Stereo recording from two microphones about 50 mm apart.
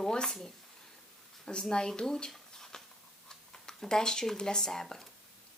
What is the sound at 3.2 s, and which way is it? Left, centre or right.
Speech, centre.